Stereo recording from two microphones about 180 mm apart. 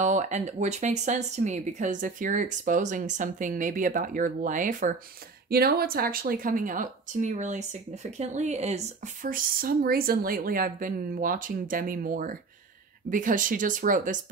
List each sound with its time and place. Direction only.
0.0 s speech: 40° right (ahead or behind)
5.5 s speech: 60° right (ahead or behind)